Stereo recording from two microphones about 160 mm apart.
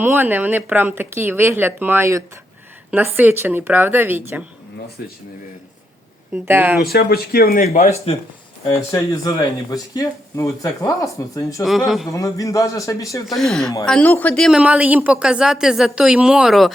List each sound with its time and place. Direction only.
0.0 s speech: 10° right (ahead or behind)
5.0 s a man's voice: 75° left (ahead or behind)
6.3 s speech: 15° right (ahead or behind)
6.8 s a man's voice: 75° left (ahead or behind)
7.7 s speech: 45° left (ahead or behind)
8.9 s speech: 20° left (ahead or behind)
11.9 s speech: centre (ahead or behind)
12.1 s speech: 20° left (ahead or behind)
13.2 s speech: centre (ahead or behind)